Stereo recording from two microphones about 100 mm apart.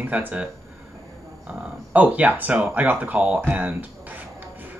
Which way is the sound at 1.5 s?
15° right (ahead or behind).